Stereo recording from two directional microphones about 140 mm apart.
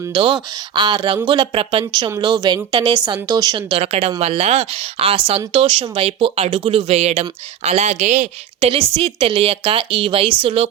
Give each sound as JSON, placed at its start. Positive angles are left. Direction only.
{"t": 0.1, "sound": "a woman's voice", "side_deg": -35}
{"t": 1.8, "sound": "a woman's voice", "side_deg": -25}
{"t": 3.8, "sound": "a woman's voice", "side_deg": -45}